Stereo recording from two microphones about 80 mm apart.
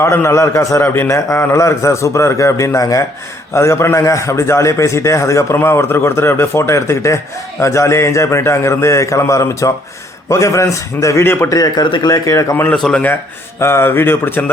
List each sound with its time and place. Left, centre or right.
0.0 s a man's voice: left
11.4 s a man's voice: left
12.7 s speech: centre
13.6 s speech: left